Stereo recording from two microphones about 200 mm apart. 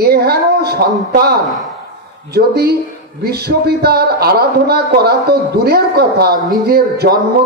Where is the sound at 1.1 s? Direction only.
50° right (ahead or behind).